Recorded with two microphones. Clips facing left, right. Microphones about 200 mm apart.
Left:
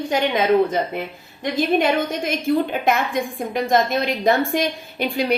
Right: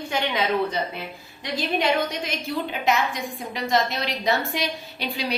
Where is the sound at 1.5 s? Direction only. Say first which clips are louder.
Left 4 dB; 50° left (ahead or behind).